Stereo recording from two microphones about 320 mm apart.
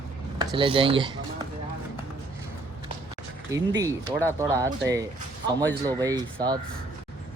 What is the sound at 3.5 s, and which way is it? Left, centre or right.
Speech, centre.